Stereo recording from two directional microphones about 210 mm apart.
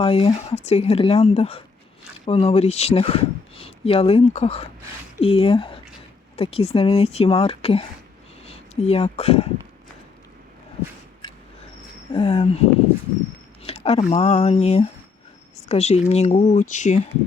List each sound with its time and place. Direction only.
0.0 s speech: 30° left (ahead or behind)
12.1 s speech: 30° left (ahead or behind)
13.6 s speech: 30° left (ahead or behind)